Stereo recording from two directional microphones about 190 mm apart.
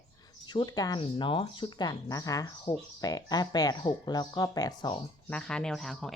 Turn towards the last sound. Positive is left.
turn(degrees=0)  # may be behind; listen again after turning